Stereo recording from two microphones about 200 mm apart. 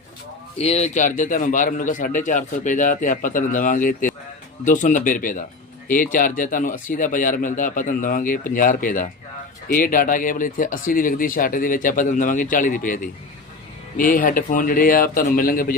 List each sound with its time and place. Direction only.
0.6 s a man's voice: 30° left (ahead or behind)